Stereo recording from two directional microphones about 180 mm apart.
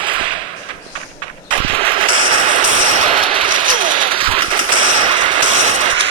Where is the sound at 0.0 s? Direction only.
30° right (ahead or behind).